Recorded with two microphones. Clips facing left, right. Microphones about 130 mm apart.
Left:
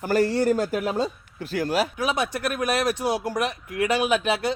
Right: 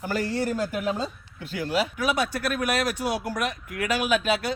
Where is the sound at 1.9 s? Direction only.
25° left (ahead or behind).